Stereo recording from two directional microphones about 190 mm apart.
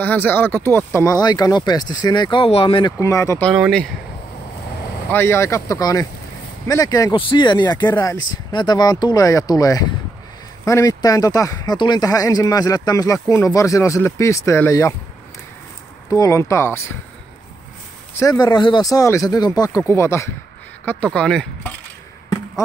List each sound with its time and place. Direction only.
0.0 s speech: 10° left (ahead or behind); by 2.9 s 30° left (ahead or behind)
3.0 s speech: 15° left (ahead or behind)
3.4 s speech: centre (ahead or behind)
5.1 s speech: 15° left (ahead or behind)
16.1 s speech: 20° left (ahead or behind)
18.2 s speech: 20° left (ahead or behind); by 21.7 s 5° left (ahead or behind)